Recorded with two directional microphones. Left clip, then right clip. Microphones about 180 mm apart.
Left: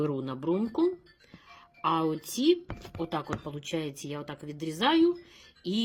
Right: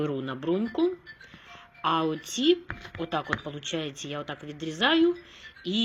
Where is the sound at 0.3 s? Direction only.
20° left (ahead or behind).